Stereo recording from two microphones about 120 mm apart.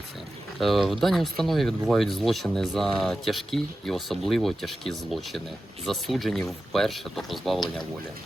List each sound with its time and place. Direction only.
0.6 s speech: centre (ahead or behind)